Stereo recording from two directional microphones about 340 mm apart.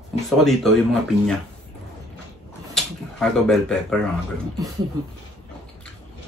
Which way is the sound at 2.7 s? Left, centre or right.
Centre.